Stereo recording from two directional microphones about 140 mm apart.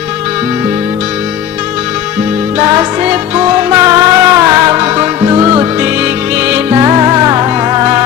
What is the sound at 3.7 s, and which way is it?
Music, 25° right (ahead or behind).